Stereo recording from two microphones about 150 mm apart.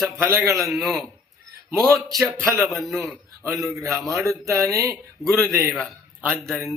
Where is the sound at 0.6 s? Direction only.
Centre (ahead or behind).